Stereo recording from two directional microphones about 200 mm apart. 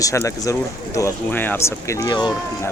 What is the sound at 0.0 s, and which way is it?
Speech, 15° left (ahead or behind).